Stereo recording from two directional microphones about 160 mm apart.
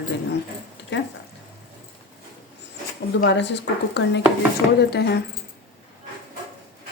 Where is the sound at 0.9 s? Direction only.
90° left.